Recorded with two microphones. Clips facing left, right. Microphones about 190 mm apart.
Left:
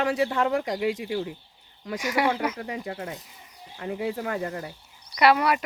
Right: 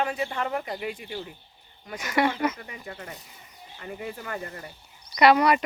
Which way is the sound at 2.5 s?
80° left.